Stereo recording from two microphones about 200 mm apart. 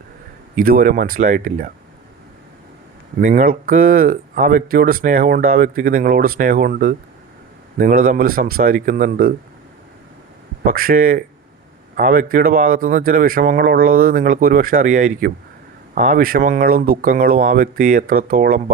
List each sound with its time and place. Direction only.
0.5 s speech: 45° right (ahead or behind)
3.2 s speech: 40° right (ahead or behind)
10.7 s speech: 45° right (ahead or behind)